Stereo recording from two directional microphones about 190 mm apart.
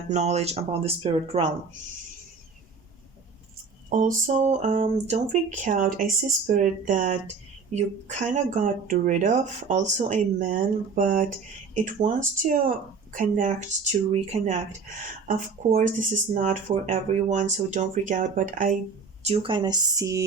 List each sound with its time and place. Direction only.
0.1 s speech: 35° right (ahead or behind)
3.8 s speech: 45° right (ahead or behind)
19.2 s speech: 30° right (ahead or behind)